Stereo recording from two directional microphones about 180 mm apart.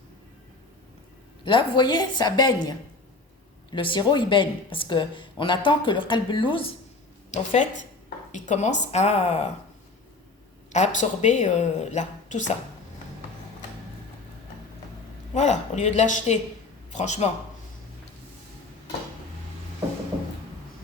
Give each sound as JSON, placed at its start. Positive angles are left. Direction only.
{"t": 1.5, "sound": "speech", "side_deg": 30}
{"t": 7.3, "sound": "speech", "side_deg": 40}
{"t": 10.7, "sound": "speech", "side_deg": 40}
{"t": 15.4, "sound": "speech", "side_deg": 40}